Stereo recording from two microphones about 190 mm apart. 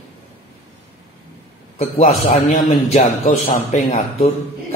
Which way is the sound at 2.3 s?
40° left (ahead or behind).